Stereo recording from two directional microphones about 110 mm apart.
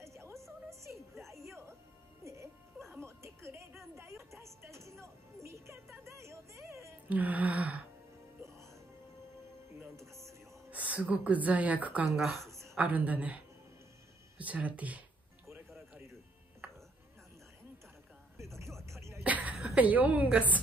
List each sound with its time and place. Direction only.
0.0 s music: 25° right (ahead or behind)
7.1 s gasp: 15° right (ahead or behind)
9.8 s music: 25° right (ahead or behind)
10.7 s speech: 15° right (ahead or behind)
12.2 s a woman's voice: centre (ahead or behind)
12.4 s a sound: 25° right (ahead or behind)
12.7 s gasp: 15° right (ahead or behind)
14.4 s speech: 15° right (ahead or behind)
18.9 s a sound: 25° right (ahead or behind)
19.2 s a sound: 15° right (ahead or behind)
19.5 s a woman's voice: 10° right (ahead or behind)